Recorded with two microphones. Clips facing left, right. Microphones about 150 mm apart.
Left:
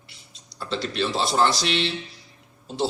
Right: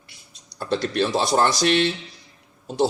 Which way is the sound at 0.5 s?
50° right (ahead or behind).